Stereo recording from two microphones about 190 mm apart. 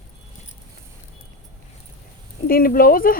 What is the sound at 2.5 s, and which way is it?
Speech, 50° left (ahead or behind).